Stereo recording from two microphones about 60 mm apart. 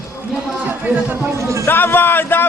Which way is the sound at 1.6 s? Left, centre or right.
Left.